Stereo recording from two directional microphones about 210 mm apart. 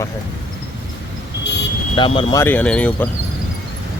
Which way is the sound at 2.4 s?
5° left (ahead or behind).